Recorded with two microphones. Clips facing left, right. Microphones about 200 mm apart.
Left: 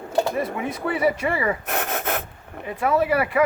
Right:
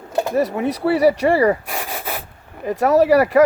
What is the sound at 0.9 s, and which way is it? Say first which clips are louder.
Speech: right 7 dB; 40° right (ahead or behind).